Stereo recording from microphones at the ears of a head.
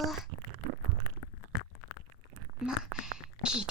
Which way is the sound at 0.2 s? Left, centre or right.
Right.